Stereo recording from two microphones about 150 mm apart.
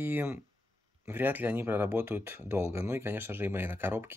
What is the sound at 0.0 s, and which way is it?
Speech, 15° right (ahead or behind).